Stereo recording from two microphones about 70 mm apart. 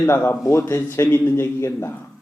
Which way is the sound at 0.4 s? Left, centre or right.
Left.